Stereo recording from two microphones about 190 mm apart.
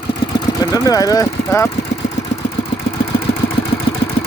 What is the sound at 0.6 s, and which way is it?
Speech, 20° left (ahead or behind).